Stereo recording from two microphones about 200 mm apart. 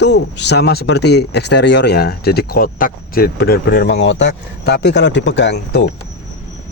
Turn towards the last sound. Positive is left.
turn(degrees=60)  # may be behind; listen again after turning